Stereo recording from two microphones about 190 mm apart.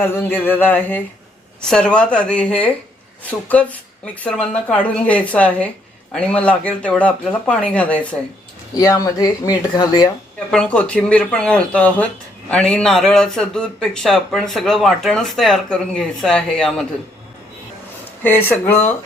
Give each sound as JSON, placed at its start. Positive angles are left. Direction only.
{"t": 0.0, "sound": "a man's voice", "side_deg": 10}
{"t": 8.7, "sound": "speech", "side_deg": 20}
{"t": 10.5, "sound": "a man's voice", "side_deg": 5}
{"t": 18.2, "sound": "speech", "side_deg": 10}